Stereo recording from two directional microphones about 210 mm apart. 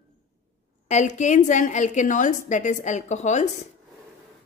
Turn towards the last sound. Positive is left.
turn(degrees=35)  # may be behind; listen again after turning